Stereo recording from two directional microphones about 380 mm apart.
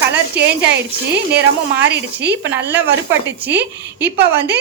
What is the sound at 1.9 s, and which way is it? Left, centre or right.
Speech, right.